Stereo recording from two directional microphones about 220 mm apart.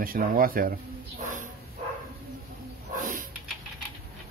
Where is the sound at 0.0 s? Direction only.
40° right (ahead or behind).